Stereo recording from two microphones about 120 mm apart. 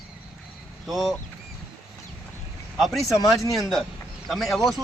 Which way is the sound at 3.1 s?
30° left (ahead or behind).